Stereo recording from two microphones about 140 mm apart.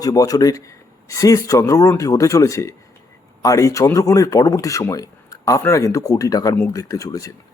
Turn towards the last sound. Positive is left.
turn(degrees=25)  # may be behind; listen again after turning